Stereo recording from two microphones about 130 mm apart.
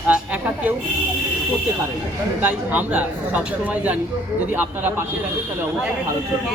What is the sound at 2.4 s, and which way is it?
Speech, 15° right (ahead or behind).